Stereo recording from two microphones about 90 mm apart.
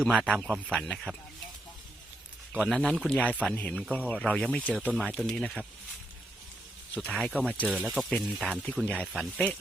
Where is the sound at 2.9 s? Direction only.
10° left (ahead or behind).